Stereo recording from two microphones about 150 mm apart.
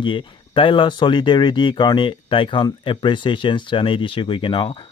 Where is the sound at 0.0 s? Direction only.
35° left (ahead or behind).